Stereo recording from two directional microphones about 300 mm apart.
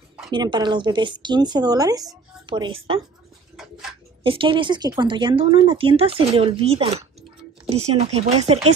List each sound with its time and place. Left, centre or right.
0.3 s speech: centre
4.2 s speech: centre